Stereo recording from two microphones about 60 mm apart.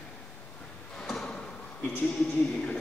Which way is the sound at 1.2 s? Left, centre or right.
Centre.